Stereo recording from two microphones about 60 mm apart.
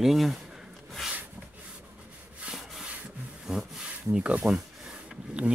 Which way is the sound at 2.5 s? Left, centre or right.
Centre.